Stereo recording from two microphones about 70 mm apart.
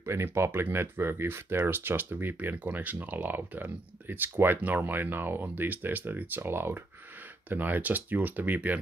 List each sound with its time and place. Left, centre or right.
0.0 s speech: right